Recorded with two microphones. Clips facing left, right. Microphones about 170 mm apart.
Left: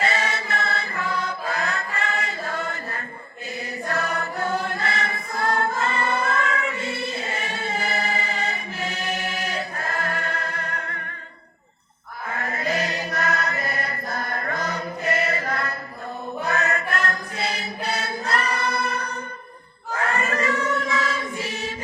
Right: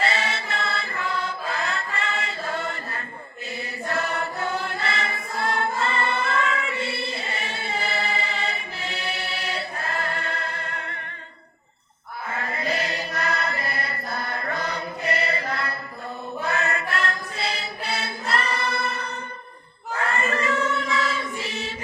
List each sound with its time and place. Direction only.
0.0 s mantra: 40° left (ahead or behind)
4.4 s choir: 45° left (ahead or behind)
12.4 s chant: 45° left (ahead or behind)
16.5 s mantra: 40° left (ahead or behind)
18.7 s music: 40° left (ahead or behind)
20.3 s choir: 40° left (ahead or behind)